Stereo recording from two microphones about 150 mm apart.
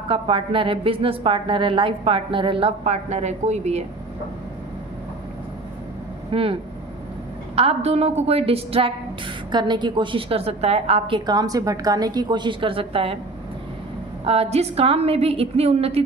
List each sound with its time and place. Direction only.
0.1 s a woman's voice: 35° right (ahead or behind)
2.8 s a woman's voice: 50° right (ahead or behind)
6.3 s a woman's voice: 40° right (ahead or behind)
14.2 s a woman's voice: 40° right (ahead or behind)